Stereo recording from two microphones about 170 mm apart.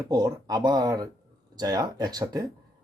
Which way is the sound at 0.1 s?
20° right (ahead or behind).